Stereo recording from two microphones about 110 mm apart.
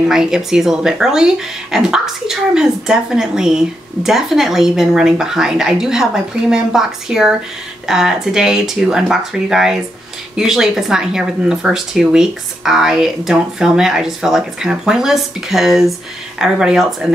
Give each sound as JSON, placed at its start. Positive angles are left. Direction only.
{"t": 0.1, "sound": "speech", "side_deg": -5}